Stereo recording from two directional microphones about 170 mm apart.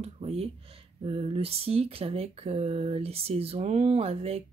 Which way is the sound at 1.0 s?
35° right (ahead or behind).